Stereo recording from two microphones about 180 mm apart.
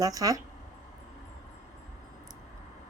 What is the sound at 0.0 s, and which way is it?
Speech, 20° right (ahead or behind).